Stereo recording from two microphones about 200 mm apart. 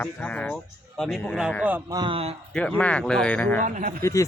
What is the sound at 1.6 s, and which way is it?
Speech, 10° right (ahead or behind).